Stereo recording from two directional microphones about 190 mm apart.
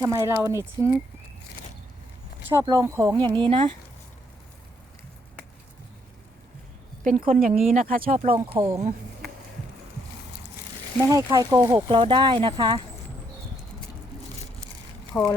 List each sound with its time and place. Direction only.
0.0 s speech: 15° right (ahead or behind)
2.5 s speech: 15° right (ahead or behind)
7.0 s speech: 45° right (ahead or behind)
8.4 s speech: 15° right (ahead or behind)
11.1 s speech: 20° right (ahead or behind)
15.1 s speech: 10° left (ahead or behind)